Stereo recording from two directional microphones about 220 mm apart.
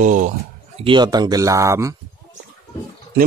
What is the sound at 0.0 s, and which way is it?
Speech, 35° right (ahead or behind).